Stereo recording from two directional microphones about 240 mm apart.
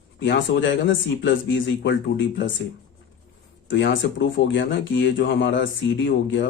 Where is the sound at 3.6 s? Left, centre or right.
Left.